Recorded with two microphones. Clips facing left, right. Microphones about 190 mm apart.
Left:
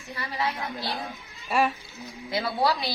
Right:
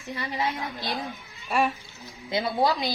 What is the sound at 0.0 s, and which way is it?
Speech, 20° right (ahead or behind).